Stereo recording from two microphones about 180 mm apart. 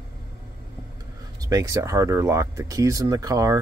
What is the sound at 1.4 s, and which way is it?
Speech, 20° right (ahead or behind).